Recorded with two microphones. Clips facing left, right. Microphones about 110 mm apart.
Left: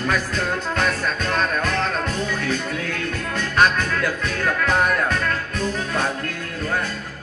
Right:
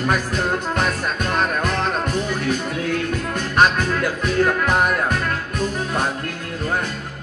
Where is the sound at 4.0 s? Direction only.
15° right (ahead or behind).